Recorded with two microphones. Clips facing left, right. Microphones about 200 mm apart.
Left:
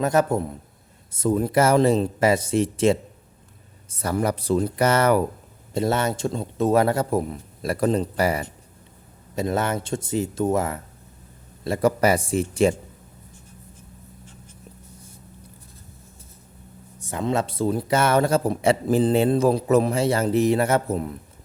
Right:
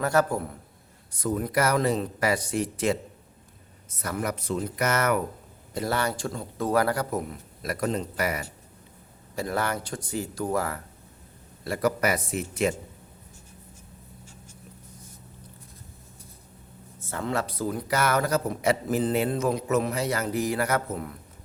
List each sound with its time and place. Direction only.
0.0 s a man's voice: 20° left (ahead or behind)
17.0 s a man's voice: 15° left (ahead or behind)